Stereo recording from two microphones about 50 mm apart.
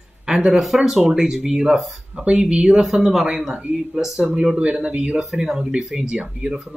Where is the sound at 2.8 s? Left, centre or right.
Centre.